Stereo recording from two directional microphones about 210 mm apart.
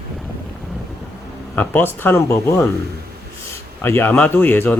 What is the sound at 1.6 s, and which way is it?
Speech, 10° left (ahead or behind).